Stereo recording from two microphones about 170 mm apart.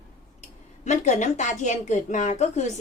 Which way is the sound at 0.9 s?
45° left (ahead or behind).